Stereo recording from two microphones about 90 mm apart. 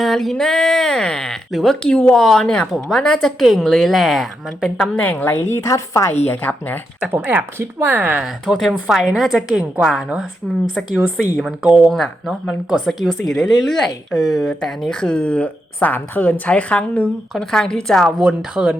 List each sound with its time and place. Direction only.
0.0 s a woman's voice: centre (ahead or behind)
4.8 s speech: 20° left (ahead or behind)
5.5 s speech: 35° left (ahead or behind); by 6.7 s 20° left (ahead or behind)
7.1 s speech: 20° right (ahead or behind)
8.2 s a woman's voice: centre (ahead or behind)
11.8 s a woman's voice: centre (ahead or behind)
18.2 s speech: 10° right (ahead or behind)